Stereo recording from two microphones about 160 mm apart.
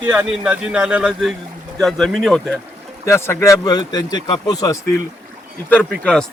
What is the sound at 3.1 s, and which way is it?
Speech, 15° left (ahead or behind).